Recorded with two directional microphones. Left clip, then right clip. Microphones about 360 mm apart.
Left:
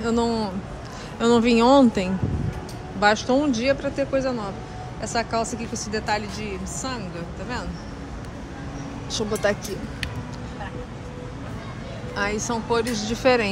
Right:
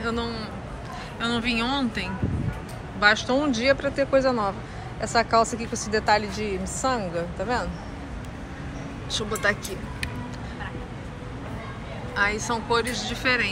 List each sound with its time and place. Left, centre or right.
0.0 s speech: centre
9.1 s speech: centre
12.2 s speech: centre